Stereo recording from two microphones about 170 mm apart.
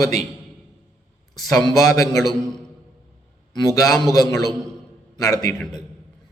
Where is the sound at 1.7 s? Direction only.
20° left (ahead or behind).